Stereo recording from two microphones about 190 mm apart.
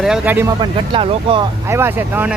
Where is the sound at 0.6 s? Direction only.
25° right (ahead or behind).